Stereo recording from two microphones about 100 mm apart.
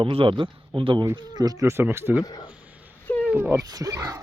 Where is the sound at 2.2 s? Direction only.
40° left (ahead or behind).